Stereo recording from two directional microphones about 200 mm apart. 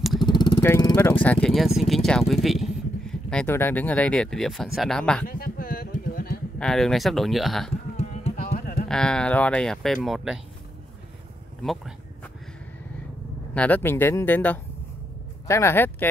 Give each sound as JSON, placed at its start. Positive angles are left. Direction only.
{"t": 0.2, "sound": "speech", "side_deg": 20}
{"t": 5.2, "sound": "a sound", "side_deg": 45}
{"t": 6.6, "sound": "speech", "side_deg": 0}
{"t": 8.0, "sound": "music", "side_deg": 30}
{"t": 8.8, "sound": "speech", "side_deg": 5}
{"t": 11.6, "sound": "speech", "side_deg": 0}
{"t": 13.6, "sound": "speech", "side_deg": 10}